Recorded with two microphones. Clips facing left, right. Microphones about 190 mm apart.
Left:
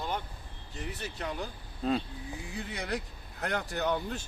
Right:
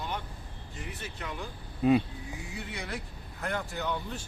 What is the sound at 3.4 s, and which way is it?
Speech, 70° left (ahead or behind).